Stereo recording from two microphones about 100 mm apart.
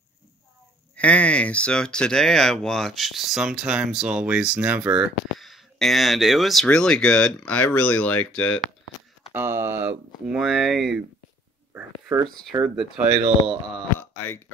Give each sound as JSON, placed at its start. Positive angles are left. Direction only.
{"t": 0.9, "sound": "speech", "side_deg": 15}
{"t": 9.3, "sound": "speech", "side_deg": -25}
{"t": 10.2, "sound": "speech", "side_deg": -5}
{"t": 12.6, "sound": "speech", "side_deg": -5}
{"t": 13.9, "sound": "a sound", "side_deg": 20}